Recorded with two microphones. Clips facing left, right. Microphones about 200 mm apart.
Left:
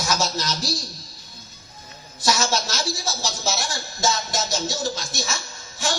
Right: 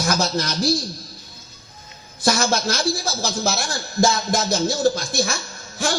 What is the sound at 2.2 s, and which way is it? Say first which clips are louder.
Speech: right 3 dB; 55° right (ahead or behind).